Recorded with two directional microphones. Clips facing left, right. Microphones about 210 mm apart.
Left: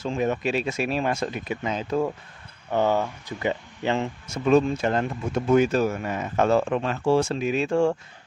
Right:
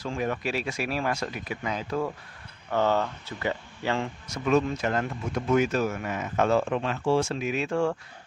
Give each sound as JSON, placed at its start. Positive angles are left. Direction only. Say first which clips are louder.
{"t": 0.0, "sound": "speech", "louder": "left 4 dB", "side_deg": 25}